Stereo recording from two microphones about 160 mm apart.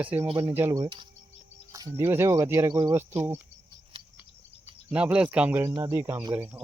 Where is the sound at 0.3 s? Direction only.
30° right (ahead or behind).